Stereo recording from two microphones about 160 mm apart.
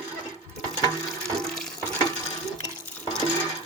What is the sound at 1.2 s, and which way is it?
Water, centre (ahead or behind).